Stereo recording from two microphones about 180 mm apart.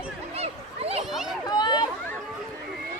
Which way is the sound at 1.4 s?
25° left (ahead or behind).